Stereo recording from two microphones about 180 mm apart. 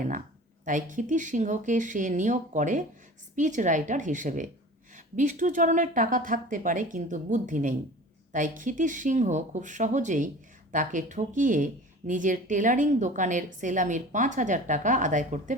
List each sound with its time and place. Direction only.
0.6 s speech: 45° right (ahead or behind)